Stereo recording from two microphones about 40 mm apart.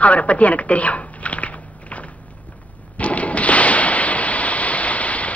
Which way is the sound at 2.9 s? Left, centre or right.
Left.